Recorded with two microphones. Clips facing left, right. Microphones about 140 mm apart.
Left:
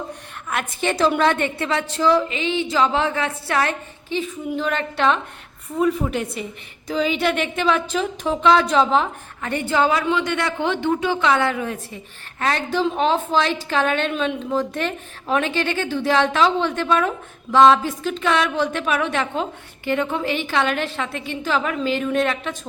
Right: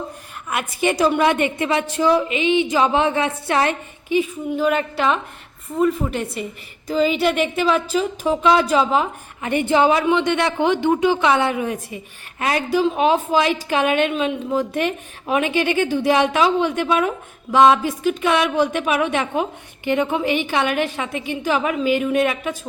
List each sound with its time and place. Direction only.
0.5 s a woman's voice: 10° right (ahead or behind)
9.4 s a woman's voice: 15° right (ahead or behind)